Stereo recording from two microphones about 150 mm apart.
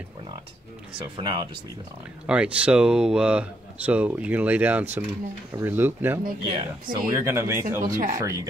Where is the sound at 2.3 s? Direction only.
10° right (ahead or behind).